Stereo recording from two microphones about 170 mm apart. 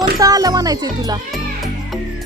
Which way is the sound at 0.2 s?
20° right (ahead or behind).